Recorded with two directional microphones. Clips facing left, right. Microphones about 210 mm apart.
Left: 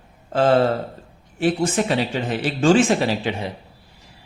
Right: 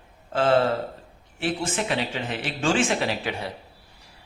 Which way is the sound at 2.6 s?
40° left (ahead or behind).